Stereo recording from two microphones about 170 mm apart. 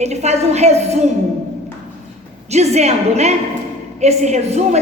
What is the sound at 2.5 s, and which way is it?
A woman's voice, 40° right (ahead or behind).